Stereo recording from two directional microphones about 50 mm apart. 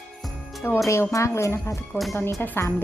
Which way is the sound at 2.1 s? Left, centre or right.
Left.